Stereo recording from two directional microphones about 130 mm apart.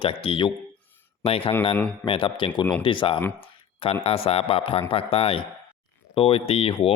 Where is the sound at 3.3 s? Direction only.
45° left (ahead or behind).